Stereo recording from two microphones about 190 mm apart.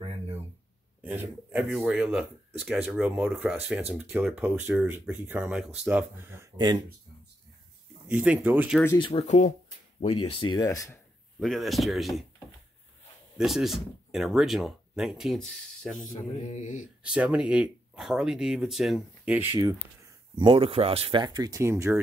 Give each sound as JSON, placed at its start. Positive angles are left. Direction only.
{"t": 1.0, "sound": "speech", "side_deg": -10}
{"t": 8.1, "sound": "speech", "side_deg": -5}
{"t": 8.8, "sound": "speech", "side_deg": 25}
{"t": 11.3, "sound": "speech", "side_deg": 0}
{"t": 13.4, "sound": "speech", "side_deg": 0}
{"t": 16.1, "sound": "mantra", "side_deg": 35}
{"t": 17.0, "sound": "speech", "side_deg": -5}
{"t": 20.3, "sound": "speech", "side_deg": -25}